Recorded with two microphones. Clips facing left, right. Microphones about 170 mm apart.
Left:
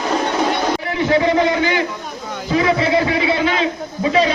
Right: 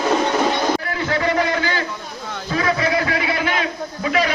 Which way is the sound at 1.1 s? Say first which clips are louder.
Left 5 dB; 20° left (ahead or behind).